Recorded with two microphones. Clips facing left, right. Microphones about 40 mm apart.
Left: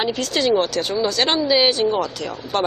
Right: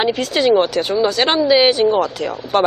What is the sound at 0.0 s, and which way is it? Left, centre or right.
Speech, centre.